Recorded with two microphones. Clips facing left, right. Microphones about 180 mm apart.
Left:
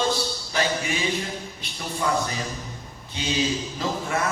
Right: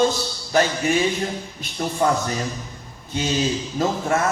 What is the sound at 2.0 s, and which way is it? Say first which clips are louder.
Music: right 4 dB; 45° right (ahead or behind).